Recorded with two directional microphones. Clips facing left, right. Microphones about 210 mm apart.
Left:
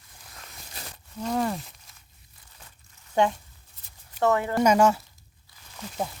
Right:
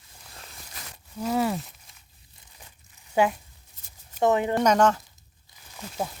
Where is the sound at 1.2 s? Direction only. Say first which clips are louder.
Right 2 dB; 5° right (ahead or behind).